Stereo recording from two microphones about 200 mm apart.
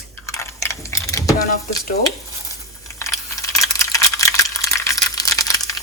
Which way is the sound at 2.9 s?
15° left (ahead or behind).